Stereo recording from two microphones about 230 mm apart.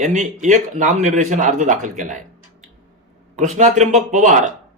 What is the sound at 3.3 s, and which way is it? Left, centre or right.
A man's voice, right.